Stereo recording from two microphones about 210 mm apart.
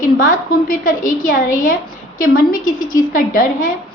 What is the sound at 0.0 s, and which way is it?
A woman's voice, 40° left (ahead or behind).